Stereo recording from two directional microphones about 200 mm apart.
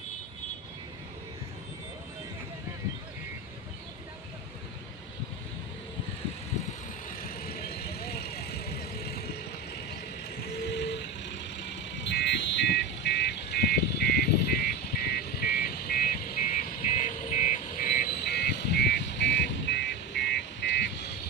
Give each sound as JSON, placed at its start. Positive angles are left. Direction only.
{"t": 7.4, "sound": "vehicle", "side_deg": 50}